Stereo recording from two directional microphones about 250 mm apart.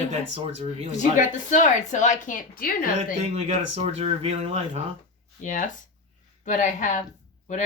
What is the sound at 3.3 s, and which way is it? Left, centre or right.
Speech, right.